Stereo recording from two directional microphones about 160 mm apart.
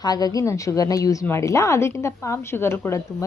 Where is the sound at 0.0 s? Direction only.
25° left (ahead or behind).